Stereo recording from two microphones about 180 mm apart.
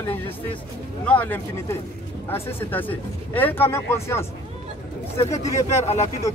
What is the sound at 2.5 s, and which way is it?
Speech, 10° left (ahead or behind).